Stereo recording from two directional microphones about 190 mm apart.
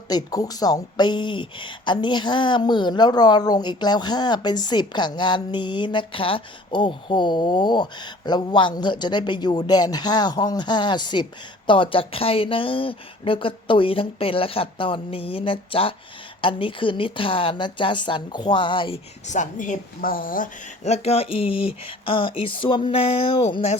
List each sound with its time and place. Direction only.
0.1 s speech: 20° left (ahead or behind)
19.3 s a woman's voice: 40° left (ahead or behind)